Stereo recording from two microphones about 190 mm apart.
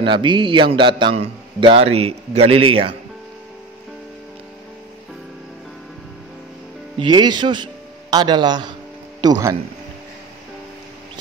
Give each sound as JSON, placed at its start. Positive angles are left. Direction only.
{"t": 0.0, "sound": "a man's voice", "side_deg": -25}
{"t": 7.0, "sound": "a man's voice", "side_deg": -25}